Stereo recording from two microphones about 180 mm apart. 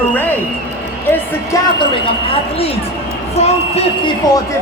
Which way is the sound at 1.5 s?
15° left (ahead or behind).